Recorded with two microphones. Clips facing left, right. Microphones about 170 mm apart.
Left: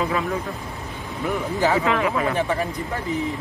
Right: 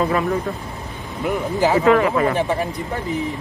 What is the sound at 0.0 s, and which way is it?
Speech, 50° right (ahead or behind).